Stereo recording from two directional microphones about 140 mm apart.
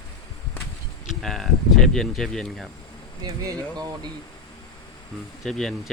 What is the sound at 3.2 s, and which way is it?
Speech, 25° right (ahead or behind).